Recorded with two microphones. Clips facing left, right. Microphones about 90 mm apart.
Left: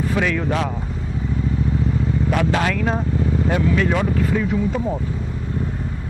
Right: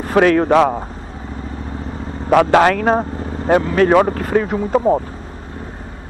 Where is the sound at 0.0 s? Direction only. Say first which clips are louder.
Right 8 dB; 55° right (ahead or behind).